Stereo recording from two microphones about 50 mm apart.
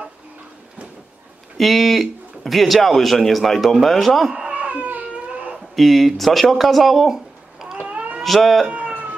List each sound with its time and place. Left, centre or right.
1.6 s speech: centre
4.3 s cat: centre
4.6 s baby cry: right
5.8 s speech: centre
7.8 s cat: right
8.2 s speech: centre
8.6 s cat: right